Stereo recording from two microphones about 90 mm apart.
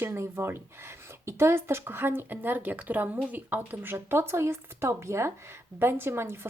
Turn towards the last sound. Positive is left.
turn(degrees=-25)  # may be behind; listen again after turning